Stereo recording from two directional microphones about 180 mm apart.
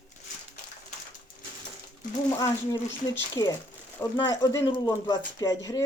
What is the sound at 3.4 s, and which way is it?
Speech, 20° left (ahead or behind).